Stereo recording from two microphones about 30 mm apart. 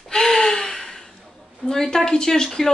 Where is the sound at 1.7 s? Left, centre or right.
Centre.